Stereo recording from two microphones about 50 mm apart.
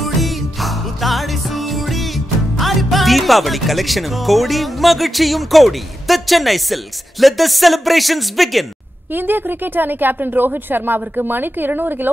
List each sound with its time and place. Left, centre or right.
0.0 s music: centre
9.1 s speech: right